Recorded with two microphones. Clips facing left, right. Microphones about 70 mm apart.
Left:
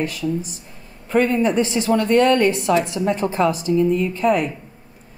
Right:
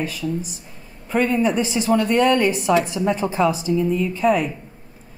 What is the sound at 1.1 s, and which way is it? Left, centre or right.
Speech, centre.